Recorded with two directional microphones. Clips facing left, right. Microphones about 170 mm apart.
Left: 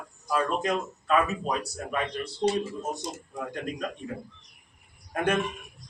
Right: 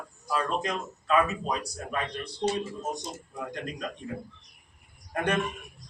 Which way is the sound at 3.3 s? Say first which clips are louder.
Left 2 dB; 5° left (ahead or behind).